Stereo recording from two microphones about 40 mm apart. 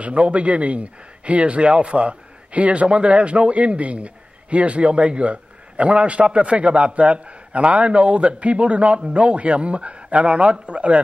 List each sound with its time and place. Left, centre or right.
0.0 s a man's voice: right